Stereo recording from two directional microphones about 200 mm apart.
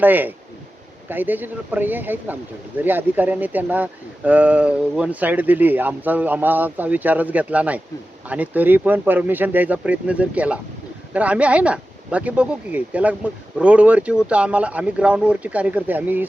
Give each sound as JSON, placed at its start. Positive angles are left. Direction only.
{"t": 0.0, "sound": "speech", "side_deg": -10}